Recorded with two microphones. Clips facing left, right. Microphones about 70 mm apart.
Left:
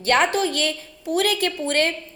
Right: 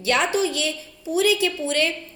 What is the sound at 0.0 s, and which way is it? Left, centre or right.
A woman's voice, left.